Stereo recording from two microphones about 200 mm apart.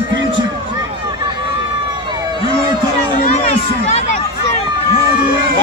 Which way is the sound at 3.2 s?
35° left (ahead or behind).